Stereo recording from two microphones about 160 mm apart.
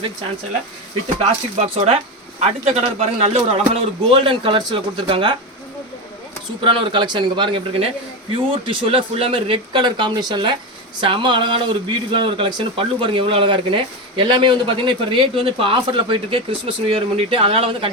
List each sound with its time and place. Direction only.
1.5 s a man's voice: 40° right (ahead or behind)
6.6 s a man's voice: 35° right (ahead or behind)